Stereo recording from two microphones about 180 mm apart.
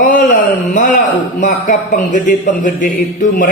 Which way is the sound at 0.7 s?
45° left (ahead or behind).